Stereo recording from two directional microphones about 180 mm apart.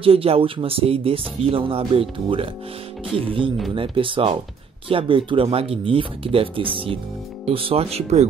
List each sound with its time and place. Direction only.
0.0 s speech: 30° right (ahead or behind)